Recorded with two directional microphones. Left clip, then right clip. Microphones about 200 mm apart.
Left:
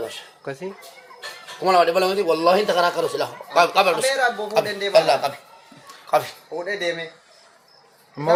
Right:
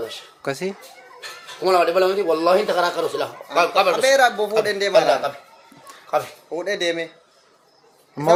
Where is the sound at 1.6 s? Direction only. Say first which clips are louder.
Even; 20° left (ahead or behind).